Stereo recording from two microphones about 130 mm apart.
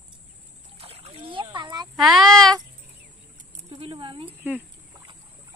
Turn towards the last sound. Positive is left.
turn(degrees=-40)  # may be behind; listen again after turning